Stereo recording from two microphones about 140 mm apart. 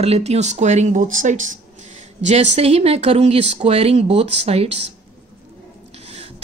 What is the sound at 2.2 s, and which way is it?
Speech, 55° right (ahead or behind).